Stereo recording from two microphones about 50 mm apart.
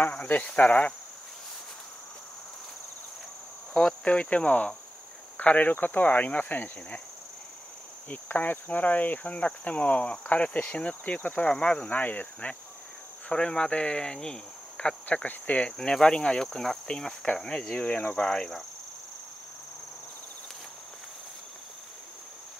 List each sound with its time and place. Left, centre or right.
0.6 s cricket: left
3.7 s speech: centre
4.1 s cricket: left
5.4 s speech: left
8.1 s speech: left
9.3 s cricket: left
11.4 s speech: centre
11.9 s speech: left
13.3 s cricket: centre
15.2 s speech: left
15.8 s speech: centre
16.4 s speech: centre
17.8 s cricket: left